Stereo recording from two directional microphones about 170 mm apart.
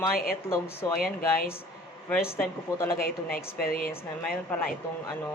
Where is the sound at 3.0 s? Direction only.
60° left (ahead or behind).